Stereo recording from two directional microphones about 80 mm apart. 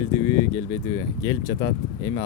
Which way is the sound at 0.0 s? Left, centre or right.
Left.